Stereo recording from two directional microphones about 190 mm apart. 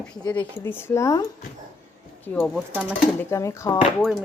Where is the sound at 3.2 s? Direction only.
15° left (ahead or behind).